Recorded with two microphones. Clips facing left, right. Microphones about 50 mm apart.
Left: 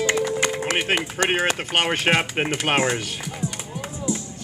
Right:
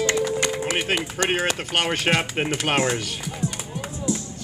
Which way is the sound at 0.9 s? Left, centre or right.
Left.